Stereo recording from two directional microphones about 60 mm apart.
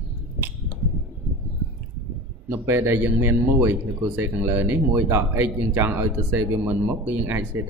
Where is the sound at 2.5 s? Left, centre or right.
Right.